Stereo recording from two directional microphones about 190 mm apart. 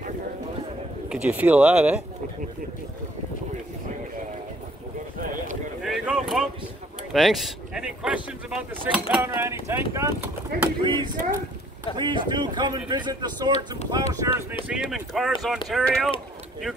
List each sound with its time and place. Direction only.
1.0 s speech: 5° right (ahead or behind)
5.2 s clip-clop: 45° right (ahead or behind)
5.8 s a sound: 5° right (ahead or behind)
7.1 s speech: centre (ahead or behind)
9.2 s speech: 15° right (ahead or behind)
10.8 s speech: 25° right (ahead or behind)
14.7 s speech: centre (ahead or behind)